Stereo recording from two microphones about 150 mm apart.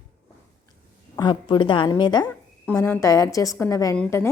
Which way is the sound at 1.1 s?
30° left (ahead or behind).